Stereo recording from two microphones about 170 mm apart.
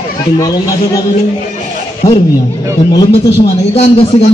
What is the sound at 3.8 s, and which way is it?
Speech, 35° left (ahead or behind).